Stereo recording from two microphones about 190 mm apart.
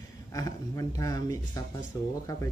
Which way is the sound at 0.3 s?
15° left (ahead or behind).